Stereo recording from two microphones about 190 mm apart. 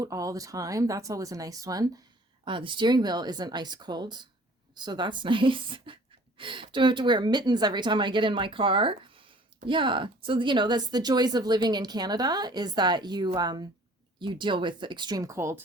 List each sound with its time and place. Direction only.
0.0 s speech: 15° right (ahead or behind)